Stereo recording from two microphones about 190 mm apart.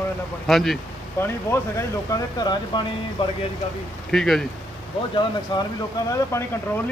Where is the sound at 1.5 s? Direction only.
15° left (ahead or behind).